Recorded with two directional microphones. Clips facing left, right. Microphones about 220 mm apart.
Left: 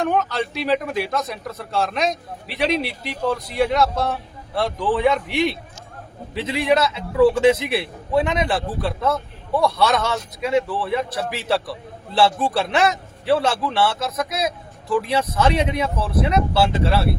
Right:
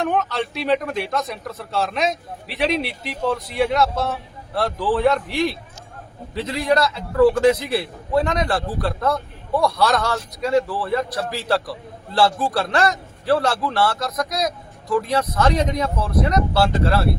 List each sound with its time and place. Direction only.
0.0 s speech: centre (ahead or behind)
6.3 s a man's voice: 25° left (ahead or behind)
6.7 s a man's voice: centre (ahead or behind)